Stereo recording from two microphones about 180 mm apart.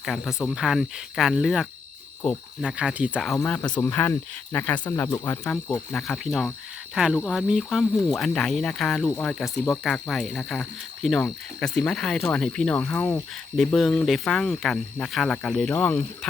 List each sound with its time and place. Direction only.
0.0 s speech: centre (ahead or behind)
3.3 s speech: 10° left (ahead or behind)
5.0 s speech: 20° left (ahead or behind)
5.9 s speech: centre (ahead or behind)
9.3 s speech: centre (ahead or behind)